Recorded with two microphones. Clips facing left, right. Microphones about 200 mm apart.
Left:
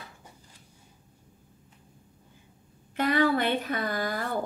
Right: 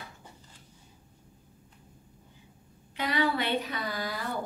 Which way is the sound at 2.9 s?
50° left (ahead or behind).